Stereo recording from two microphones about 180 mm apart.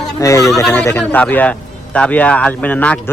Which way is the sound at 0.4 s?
Centre (ahead or behind).